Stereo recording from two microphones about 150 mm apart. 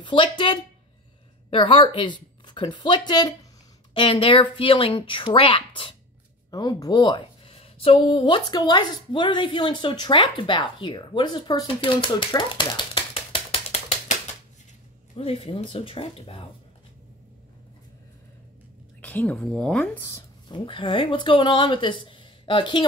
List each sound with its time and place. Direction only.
0.0 s speech: 35° left (ahead or behind)
6.5 s a woman's voice: 25° left (ahead or behind)
15.1 s speech: 40° left (ahead or behind)
18.9 s a woman's voice: 10° left (ahead or behind)
20.1 s speech: 30° left (ahead or behind)